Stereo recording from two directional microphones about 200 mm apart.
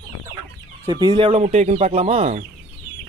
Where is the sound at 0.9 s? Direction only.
20° right (ahead or behind).